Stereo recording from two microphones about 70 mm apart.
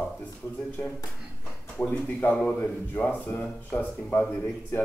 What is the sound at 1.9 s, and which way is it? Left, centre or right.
A man's voice, centre.